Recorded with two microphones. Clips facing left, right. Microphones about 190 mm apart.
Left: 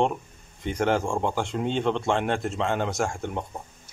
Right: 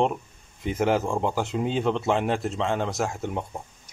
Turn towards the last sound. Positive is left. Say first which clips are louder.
# even
turn(degrees=-5)  # may be behind; listen again after turning